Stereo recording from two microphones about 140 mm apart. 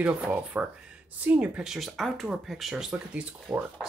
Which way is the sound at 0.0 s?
10° right (ahead or behind).